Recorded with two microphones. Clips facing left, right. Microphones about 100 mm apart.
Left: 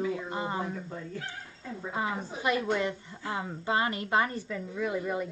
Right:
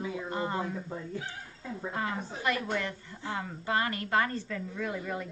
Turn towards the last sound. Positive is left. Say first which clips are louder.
# left 4 dB
turn(degrees=15)  # may be behind; listen again after turning